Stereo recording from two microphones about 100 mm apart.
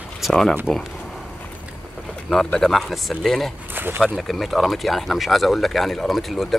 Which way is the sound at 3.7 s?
20° right (ahead or behind).